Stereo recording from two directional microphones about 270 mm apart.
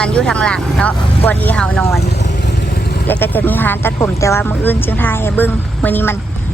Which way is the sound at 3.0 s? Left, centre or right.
Centre.